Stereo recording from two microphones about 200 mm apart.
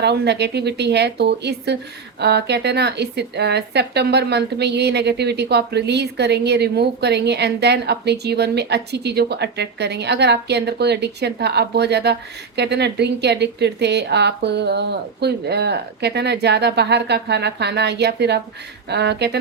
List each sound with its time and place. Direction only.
0.0 s speech: 55° right (ahead or behind)